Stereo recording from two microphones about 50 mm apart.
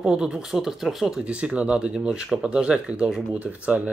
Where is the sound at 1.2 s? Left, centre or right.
Right.